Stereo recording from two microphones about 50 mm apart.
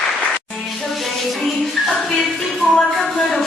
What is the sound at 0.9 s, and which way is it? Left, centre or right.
Music, centre.